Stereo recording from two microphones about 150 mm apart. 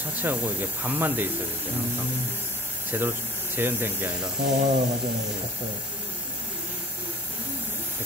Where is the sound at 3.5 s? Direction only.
15° right (ahead or behind).